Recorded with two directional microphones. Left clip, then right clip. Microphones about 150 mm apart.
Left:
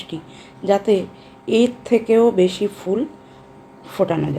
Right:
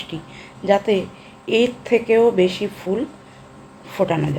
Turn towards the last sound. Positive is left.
turn(degrees=30)  # may be behind; listen again after turning